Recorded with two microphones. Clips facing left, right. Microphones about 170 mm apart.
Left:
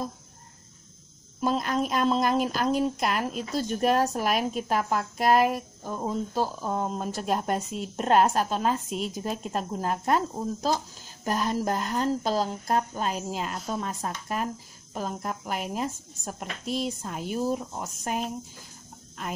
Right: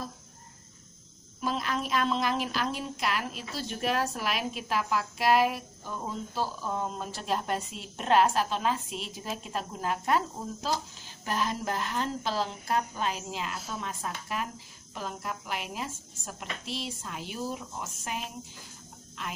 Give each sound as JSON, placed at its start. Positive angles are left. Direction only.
{"t": 1.4, "sound": "speech", "side_deg": 45}
{"t": 7.0, "sound": "speech", "side_deg": 45}